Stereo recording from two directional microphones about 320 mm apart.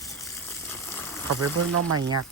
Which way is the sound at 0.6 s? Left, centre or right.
Centre.